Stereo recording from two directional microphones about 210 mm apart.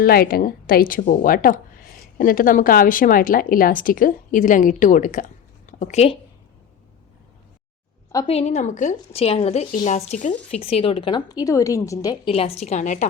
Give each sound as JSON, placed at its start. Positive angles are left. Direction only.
{"t": 0.0, "sound": "a woman's voice", "side_deg": 45}
{"t": 8.3, "sound": "a woman's voice", "side_deg": 30}
{"t": 12.3, "sound": "a woman's voice", "side_deg": 30}